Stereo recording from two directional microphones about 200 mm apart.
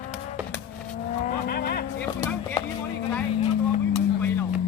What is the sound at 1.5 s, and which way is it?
Vehicle, 50° left (ahead or behind).